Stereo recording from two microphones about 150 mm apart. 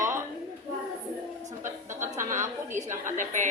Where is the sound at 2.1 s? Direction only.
55° right (ahead or behind).